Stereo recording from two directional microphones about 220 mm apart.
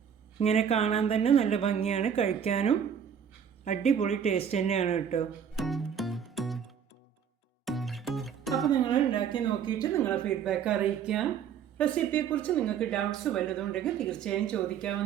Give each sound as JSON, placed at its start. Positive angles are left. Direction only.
{"t": 0.3, "sound": "speech", "side_deg": 25}
{"t": 5.5, "sound": "music", "side_deg": 0}
{"t": 7.6, "sound": "music", "side_deg": 0}
{"t": 8.8, "sound": "speech", "side_deg": 20}